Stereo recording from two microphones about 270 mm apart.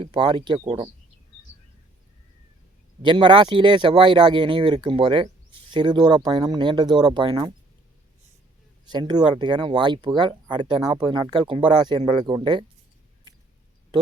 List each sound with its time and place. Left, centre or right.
0.0 s speech: centre
3.0 s speech: centre
8.9 s speech: centre
13.3 s a sound: centre